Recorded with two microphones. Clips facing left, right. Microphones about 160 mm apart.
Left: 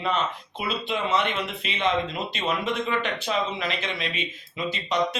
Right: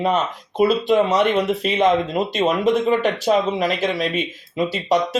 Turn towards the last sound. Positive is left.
turn(degrees=-40)  # may be behind; listen again after turning